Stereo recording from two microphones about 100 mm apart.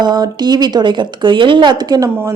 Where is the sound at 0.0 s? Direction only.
45° right (ahead or behind).